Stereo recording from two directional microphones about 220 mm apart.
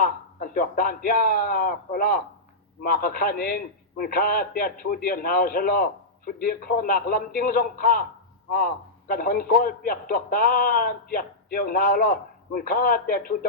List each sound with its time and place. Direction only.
0.0 s a man's voice: 40° left (ahead or behind)